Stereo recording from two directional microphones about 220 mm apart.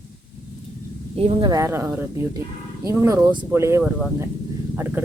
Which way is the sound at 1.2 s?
25° right (ahead or behind).